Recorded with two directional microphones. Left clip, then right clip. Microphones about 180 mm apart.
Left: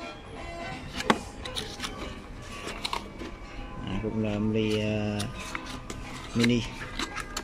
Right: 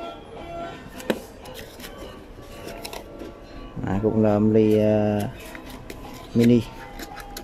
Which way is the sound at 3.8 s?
25° right (ahead or behind).